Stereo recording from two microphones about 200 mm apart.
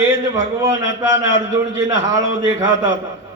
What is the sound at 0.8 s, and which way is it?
Speech, 70° left (ahead or behind).